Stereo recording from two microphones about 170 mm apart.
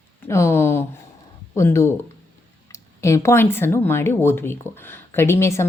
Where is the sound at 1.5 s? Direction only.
15° left (ahead or behind).